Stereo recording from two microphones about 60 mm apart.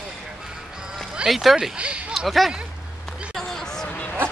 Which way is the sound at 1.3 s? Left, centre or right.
Centre.